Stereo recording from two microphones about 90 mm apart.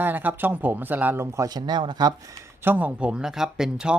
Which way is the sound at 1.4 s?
50° right (ahead or behind).